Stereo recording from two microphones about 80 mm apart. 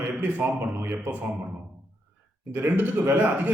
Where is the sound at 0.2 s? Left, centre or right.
Right.